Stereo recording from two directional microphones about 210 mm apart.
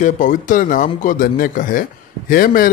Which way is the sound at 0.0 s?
40° left (ahead or behind).